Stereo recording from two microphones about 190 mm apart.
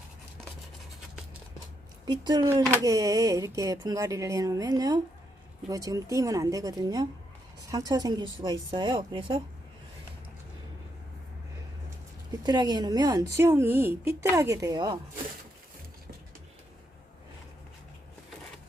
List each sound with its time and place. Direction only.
2.0 s speech: 20° right (ahead or behind)
12.4 s speech: 20° right (ahead or behind)